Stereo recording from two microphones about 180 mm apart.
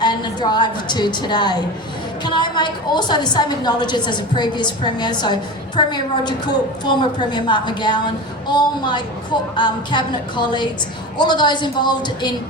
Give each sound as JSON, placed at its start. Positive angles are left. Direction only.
{"t": 0.0, "sound": "a woman's voice", "side_deg": 25}